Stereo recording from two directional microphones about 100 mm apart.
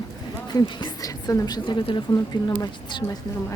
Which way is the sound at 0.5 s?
50° left (ahead or behind).